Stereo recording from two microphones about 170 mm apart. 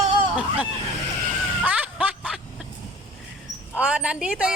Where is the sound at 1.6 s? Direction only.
10° right (ahead or behind).